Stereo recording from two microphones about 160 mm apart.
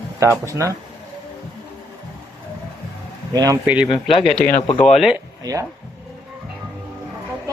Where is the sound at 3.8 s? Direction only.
35° left (ahead or behind).